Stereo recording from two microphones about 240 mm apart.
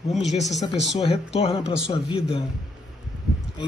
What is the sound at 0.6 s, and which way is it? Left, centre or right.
Speech, left.